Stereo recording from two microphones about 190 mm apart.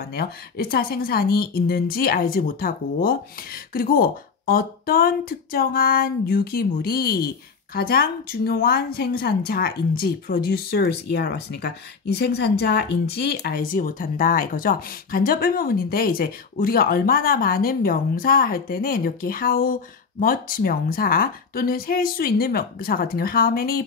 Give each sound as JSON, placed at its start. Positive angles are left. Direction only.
{"t": 0.0, "sound": "speech", "side_deg": 55}